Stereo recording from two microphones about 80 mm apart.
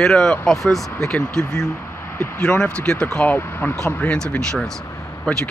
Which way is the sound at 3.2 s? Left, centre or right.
Left.